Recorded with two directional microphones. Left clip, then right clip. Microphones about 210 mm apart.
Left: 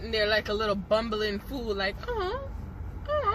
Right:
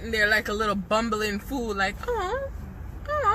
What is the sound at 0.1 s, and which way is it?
Speech, 15° right (ahead or behind).